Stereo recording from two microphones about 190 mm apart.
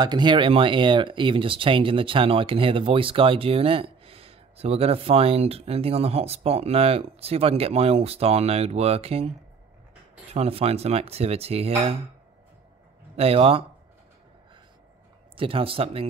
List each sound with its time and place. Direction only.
0.0 s speech: 25° right (ahead or behind)
10.3 s speech: 30° right (ahead or behind)
13.1 s speech: 30° right (ahead or behind)
15.3 s speech: 30° right (ahead or behind)